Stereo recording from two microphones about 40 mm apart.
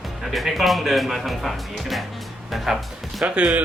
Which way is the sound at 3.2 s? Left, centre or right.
Right.